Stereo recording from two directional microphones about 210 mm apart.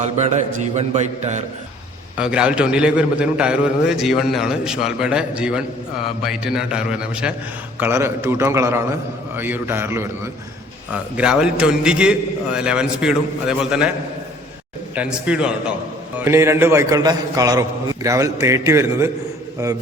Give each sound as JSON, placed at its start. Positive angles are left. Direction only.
{"t": 0.0, "sound": "a man's voice", "side_deg": -35}
{"t": 2.1, "sound": "a man's voice", "side_deg": -5}
{"t": 14.9, "sound": "a man's voice", "side_deg": -5}